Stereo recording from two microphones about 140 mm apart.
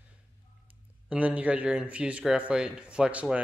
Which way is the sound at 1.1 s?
10° right (ahead or behind).